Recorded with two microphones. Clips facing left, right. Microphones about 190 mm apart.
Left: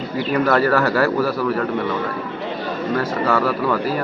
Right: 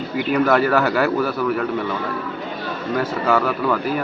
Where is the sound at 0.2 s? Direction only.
5° right (ahead or behind).